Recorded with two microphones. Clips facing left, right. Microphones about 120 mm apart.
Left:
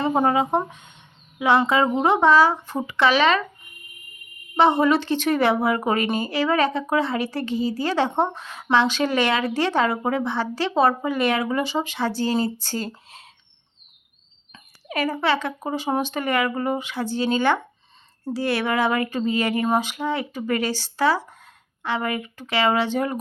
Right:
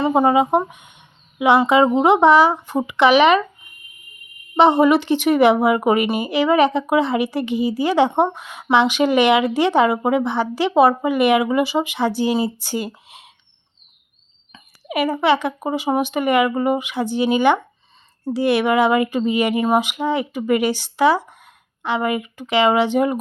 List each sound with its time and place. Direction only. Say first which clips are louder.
0.1 s a woman's voice: right 5 dB; 15° right (ahead or behind)
4.5 s a woman's voice: right 4 dB; 15° right (ahead or behind)
14.8 s a woman's voice: right 5 dB; 15° right (ahead or behind)